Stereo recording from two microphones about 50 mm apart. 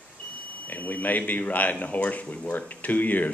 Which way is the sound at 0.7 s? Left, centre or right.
Left.